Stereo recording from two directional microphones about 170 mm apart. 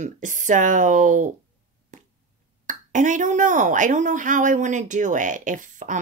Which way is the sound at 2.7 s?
50° right (ahead or behind).